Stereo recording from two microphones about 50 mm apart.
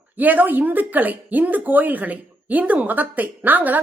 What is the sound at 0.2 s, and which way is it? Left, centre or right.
Speech, right.